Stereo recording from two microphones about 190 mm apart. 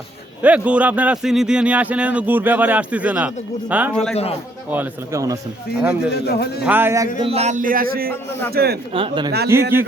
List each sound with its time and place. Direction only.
0.4 s a man's voice: 5° right (ahead or behind)
4.1 s a man's voice: 30° left (ahead or behind)
4.7 s a man's voice: 10° right (ahead or behind)
6.1 s a man's voice: 60° left (ahead or behind)
6.7 s a man's voice: 10° right (ahead or behind)
7.2 s speech: 30° right (ahead or behind); by 8.1 s 50° right (ahead or behind)
8.1 s speech: 10° left (ahead or behind)
8.5 s speech: 55° right (ahead or behind)
8.9 s speech: 30° right (ahead or behind)
9.5 s a man's voice: 10° right (ahead or behind)